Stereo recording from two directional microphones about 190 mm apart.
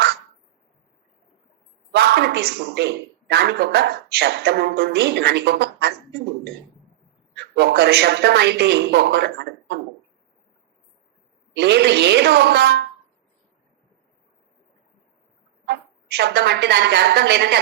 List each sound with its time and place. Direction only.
1.9 s a man's voice: 60° right (ahead or behind)
7.3 s a man's voice: 65° right (ahead or behind)
11.5 s a man's voice: 60° right (ahead or behind)
15.6 s a woman's voice: 60° right (ahead or behind)